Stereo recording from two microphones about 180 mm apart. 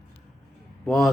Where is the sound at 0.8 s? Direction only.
Centre (ahead or behind).